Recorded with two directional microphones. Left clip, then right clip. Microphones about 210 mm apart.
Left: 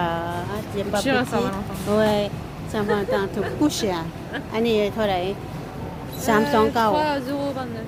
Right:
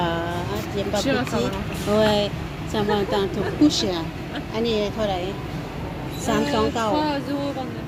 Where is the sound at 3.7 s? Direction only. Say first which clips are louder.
Right 2 dB; 10° left (ahead or behind); by 7.2 s 35° left (ahead or behind).